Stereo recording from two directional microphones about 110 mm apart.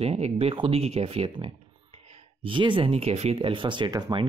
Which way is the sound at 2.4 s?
50° right (ahead or behind).